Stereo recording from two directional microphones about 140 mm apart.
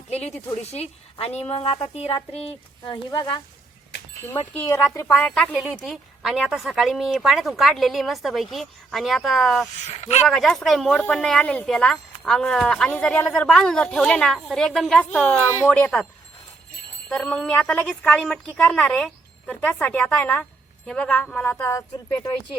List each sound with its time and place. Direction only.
0.1 s a woman's voice: 50° left (ahead or behind)
4.3 s speech: 20° left (ahead or behind)
5.3 s a woman's voice: 5° left (ahead or behind)
9.8 s speech: 50° left (ahead or behind)
10.2 s a woman's voice: centre (ahead or behind)
15.4 s a woman's voice: 20° left (ahead or behind)
17.1 s a woman's voice: 5° left (ahead or behind); by 22.3 s 25° left (ahead or behind)